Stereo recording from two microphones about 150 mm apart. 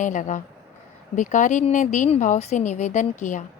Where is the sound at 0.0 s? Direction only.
55° left (ahead or behind).